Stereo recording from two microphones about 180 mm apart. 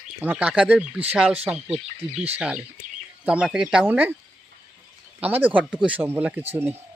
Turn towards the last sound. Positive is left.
turn(degrees=-10)  # may be behind; listen again after turning